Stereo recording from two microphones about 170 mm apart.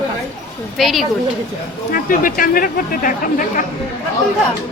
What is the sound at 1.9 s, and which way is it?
Speech, 55° left (ahead or behind).